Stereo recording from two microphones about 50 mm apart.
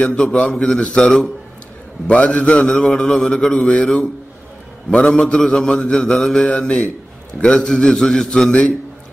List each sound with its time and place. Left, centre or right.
0.0 s mantra: centre
2.0 s a man's voice: left
3.6 s mantra: centre
7.3 s a man's voice: left
7.7 s mantra: centre